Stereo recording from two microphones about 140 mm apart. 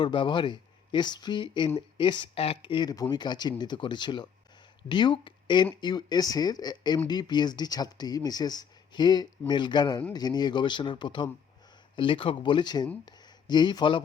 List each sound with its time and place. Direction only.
0.0 s speech: 35° left (ahead or behind)